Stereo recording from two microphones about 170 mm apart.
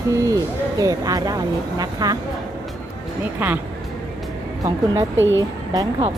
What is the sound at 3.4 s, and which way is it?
Speech, 10° right (ahead or behind).